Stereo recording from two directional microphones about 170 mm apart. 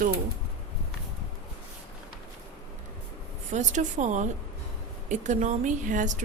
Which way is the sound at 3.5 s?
45° right (ahead or behind).